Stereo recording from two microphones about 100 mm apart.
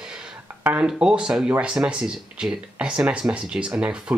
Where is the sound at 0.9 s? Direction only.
10° right (ahead or behind).